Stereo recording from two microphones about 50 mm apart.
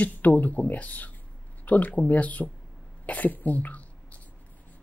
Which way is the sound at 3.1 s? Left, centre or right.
Left.